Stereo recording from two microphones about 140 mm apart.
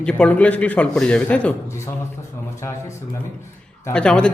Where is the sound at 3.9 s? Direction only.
5° left (ahead or behind).